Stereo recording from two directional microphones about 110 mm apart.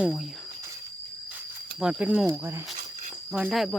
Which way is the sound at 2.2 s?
25° right (ahead or behind).